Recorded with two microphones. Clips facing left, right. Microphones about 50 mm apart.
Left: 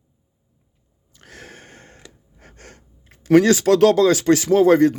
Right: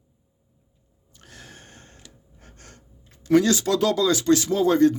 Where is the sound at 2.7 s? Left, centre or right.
Left.